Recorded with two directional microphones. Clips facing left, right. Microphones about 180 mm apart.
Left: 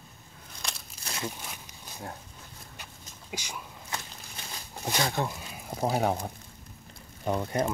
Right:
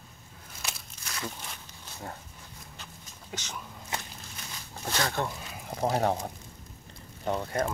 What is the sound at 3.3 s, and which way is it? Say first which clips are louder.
Speech: left 1 dB; 10° left (ahead or behind).